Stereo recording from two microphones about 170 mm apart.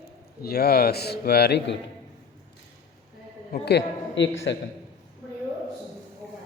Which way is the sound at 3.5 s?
75° left (ahead or behind).